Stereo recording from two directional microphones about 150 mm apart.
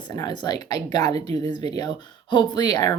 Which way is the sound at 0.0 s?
25° left (ahead or behind).